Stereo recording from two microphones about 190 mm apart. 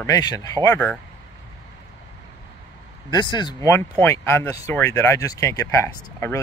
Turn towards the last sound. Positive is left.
turn(degrees=15)  # may be behind; listen again after turning